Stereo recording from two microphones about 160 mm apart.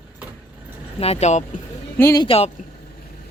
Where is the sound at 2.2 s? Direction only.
35° left (ahead or behind).